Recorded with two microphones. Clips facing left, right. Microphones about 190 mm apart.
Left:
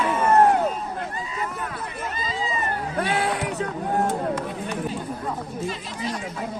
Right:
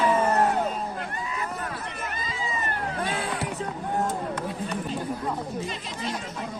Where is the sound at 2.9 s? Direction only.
70° left (ahead or behind).